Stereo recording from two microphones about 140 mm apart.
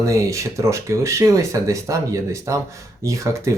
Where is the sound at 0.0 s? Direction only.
20° right (ahead or behind).